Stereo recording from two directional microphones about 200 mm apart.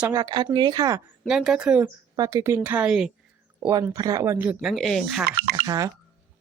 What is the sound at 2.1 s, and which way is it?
Speech, 15° right (ahead or behind).